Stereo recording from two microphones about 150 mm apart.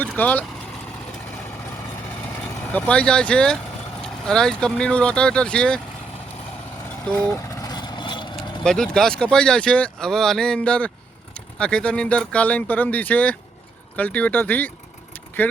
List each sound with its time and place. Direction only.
0.2 s speech: 10° left (ahead or behind)
2.2 s speech: 10° left (ahead or behind)
7.0 s vehicle: 10° left (ahead or behind); by 8.3 s 30° left (ahead or behind)
8.6 s speech: 5° left (ahead or behind)